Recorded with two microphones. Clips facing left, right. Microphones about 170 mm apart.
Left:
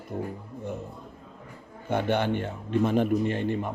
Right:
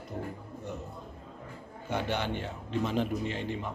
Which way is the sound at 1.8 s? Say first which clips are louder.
Left 6 dB; 55° left (ahead or behind).